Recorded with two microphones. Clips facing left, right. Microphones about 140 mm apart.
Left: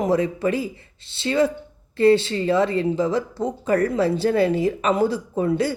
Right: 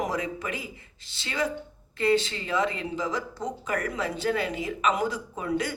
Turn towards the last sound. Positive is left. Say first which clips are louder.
# left 8 dB
turn(degrees=30)  # may be behind; listen again after turning